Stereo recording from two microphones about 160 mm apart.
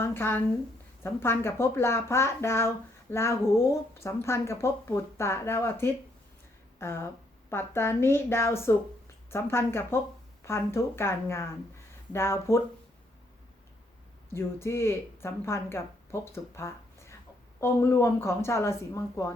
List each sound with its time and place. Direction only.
0.0 s speech: 15° left (ahead or behind)
14.3 s speech: 15° left (ahead or behind)